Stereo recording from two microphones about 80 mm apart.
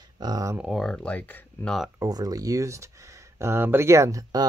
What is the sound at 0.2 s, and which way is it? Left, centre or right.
Speech, right.